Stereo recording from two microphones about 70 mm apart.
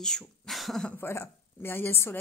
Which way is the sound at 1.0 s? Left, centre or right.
Left.